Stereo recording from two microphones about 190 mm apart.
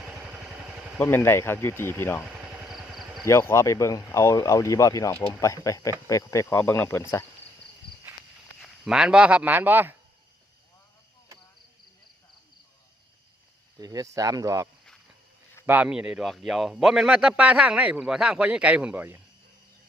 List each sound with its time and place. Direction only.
0.0 s vehicle: 5° right (ahead or behind)
0.9 s speech: 10° left (ahead or behind)
2.2 s vehicle: 5° right (ahead or behind)
3.2 s speech: 15° left (ahead or behind)
8.6 s speech: centre (ahead or behind)
13.7 s a man's voice: 20° right (ahead or behind)